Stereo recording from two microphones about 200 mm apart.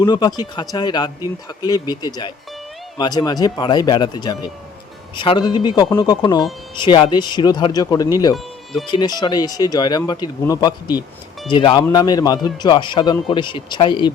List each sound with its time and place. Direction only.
0.0 s speech: 20° left (ahead or behind)